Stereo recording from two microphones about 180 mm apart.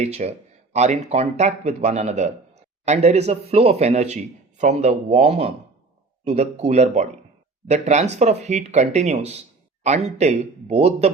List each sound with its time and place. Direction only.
0.0 s speech: 35° right (ahead or behind)